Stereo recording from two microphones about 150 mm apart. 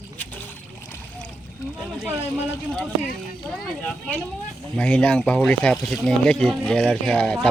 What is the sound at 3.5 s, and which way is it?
Speech, 5° left (ahead or behind).